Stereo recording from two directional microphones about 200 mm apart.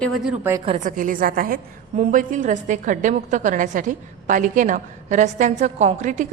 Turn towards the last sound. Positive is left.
turn(degrees=-35)  # may be behind; listen again after turning